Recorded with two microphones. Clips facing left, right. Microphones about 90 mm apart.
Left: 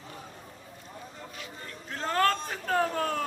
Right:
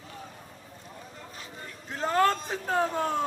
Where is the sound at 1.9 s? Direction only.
15° right (ahead or behind).